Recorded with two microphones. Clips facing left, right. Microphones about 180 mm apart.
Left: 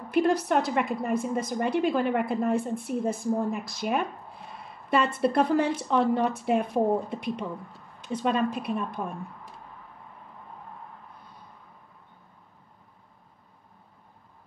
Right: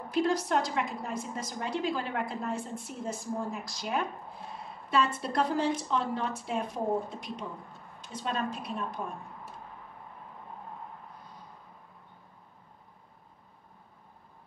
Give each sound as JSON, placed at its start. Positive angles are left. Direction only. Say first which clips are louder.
{"t": 0.1, "sound": "a woman's voice", "louder": "left 4 dB", "side_deg": 60}